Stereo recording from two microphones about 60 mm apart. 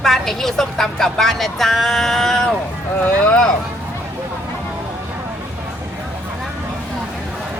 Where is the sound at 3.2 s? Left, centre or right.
Centre.